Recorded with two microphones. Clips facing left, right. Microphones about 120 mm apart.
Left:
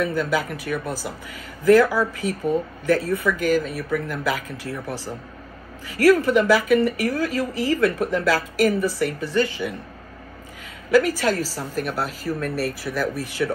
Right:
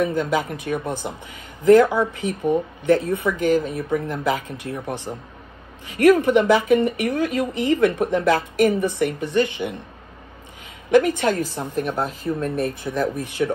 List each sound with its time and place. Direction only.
0.0 s speech: 25° right (ahead or behind)
10.9 s speech: 25° right (ahead or behind)